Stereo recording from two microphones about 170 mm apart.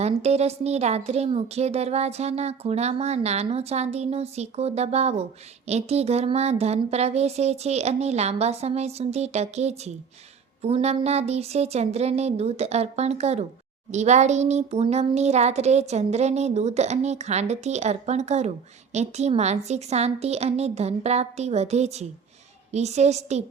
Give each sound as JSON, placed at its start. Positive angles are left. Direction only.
{"t": 0.0, "sound": "a woman's voice", "side_deg": -40}